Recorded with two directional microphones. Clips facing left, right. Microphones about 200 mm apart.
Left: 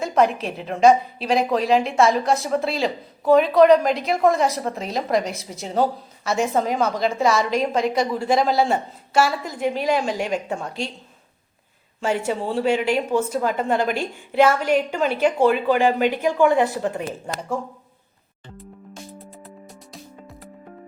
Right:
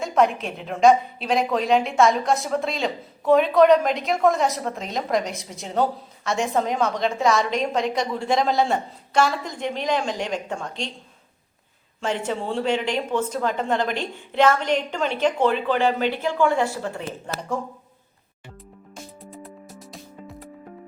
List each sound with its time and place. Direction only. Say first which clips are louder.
0.0 s a woman's voice: left 1 dB; centre (ahead or behind)
11.9 s a woman's voice: left 3 dB; 5° left (ahead or behind)
19.2 s music: right 1 dB; centre (ahead or behind)